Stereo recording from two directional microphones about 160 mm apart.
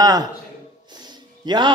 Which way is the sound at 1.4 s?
30° right (ahead or behind).